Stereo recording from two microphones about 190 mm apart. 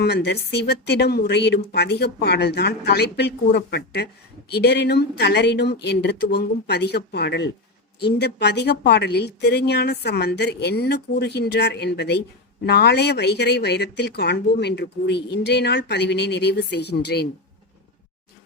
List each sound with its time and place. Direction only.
0.0 s speech: 60° left (ahead or behind)